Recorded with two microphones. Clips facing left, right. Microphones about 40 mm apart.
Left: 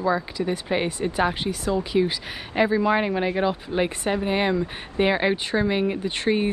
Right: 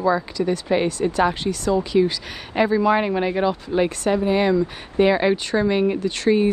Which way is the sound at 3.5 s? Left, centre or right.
Centre.